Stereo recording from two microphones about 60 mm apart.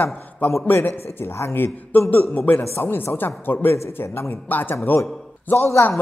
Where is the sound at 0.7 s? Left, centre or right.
Left.